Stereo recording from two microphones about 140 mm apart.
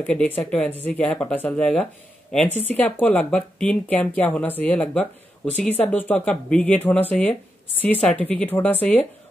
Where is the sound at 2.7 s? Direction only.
10° left (ahead or behind).